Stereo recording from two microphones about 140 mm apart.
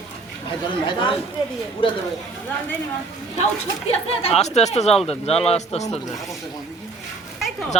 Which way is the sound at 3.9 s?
45° left (ahead or behind).